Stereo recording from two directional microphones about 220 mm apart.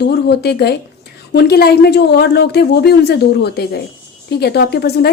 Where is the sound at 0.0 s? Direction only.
50° left (ahead or behind).